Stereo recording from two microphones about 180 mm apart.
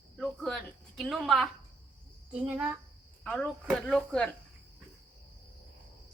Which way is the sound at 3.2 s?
5° left (ahead or behind).